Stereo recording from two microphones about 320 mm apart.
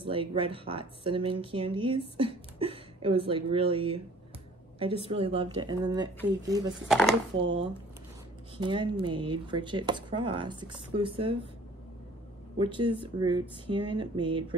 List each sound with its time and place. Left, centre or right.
0.0 s speech: centre
5.0 s speech: centre
6.9 s speech: centre
7.4 s speech: centre
12.5 s speech: centre